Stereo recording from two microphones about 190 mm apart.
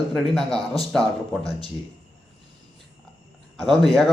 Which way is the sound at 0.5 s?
30° left (ahead or behind).